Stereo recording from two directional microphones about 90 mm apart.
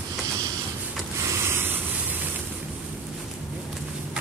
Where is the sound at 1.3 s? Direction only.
30° right (ahead or behind).